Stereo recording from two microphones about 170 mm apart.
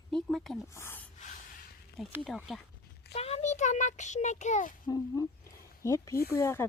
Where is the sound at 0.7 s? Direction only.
15° left (ahead or behind).